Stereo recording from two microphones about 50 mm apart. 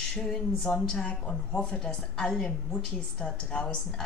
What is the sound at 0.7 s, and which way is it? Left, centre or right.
A woman's voice, centre.